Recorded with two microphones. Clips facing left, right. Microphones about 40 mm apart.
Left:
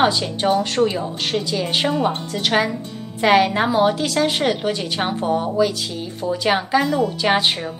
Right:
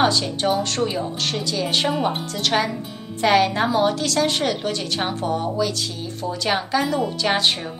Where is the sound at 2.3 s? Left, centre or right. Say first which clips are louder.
Left 2 dB; centre.